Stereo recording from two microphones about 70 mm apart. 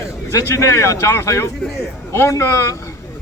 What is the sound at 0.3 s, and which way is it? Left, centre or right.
Speech, left.